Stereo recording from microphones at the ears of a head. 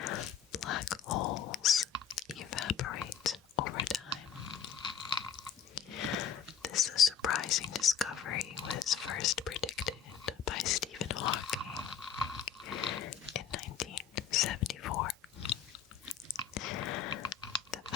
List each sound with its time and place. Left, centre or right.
0.0 s a sound: left
2.0 s whispering: left
4.6 s a sound: left
10.2 s whispering: left
12.5 s whispering: left
16.0 s chewing: left